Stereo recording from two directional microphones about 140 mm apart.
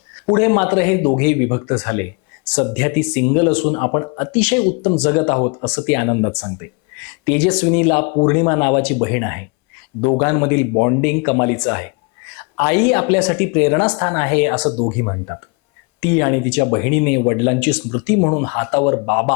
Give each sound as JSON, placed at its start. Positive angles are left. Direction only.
{"t": 0.3, "sound": "speech", "side_deg": 20}
{"t": 4.4, "sound": "speech", "side_deg": 15}
{"t": 5.6, "sound": "speech", "side_deg": 15}
{"t": 14.8, "sound": "speech", "side_deg": 25}